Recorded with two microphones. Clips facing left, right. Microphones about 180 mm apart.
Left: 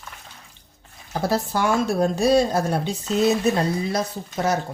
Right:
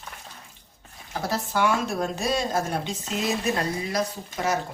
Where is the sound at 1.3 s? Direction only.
35° left (ahead or behind).